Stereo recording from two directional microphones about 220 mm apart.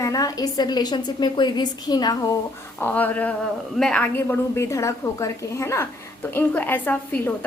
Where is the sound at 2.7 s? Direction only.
10° left (ahead or behind).